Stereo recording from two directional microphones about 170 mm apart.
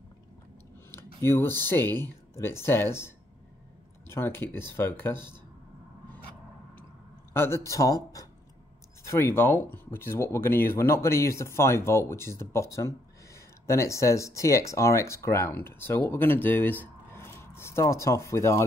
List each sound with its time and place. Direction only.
1.2 s speech: 15° left (ahead or behind)
4.1 s speech: 15° left (ahead or behind)
7.3 s speech: 15° left (ahead or behind)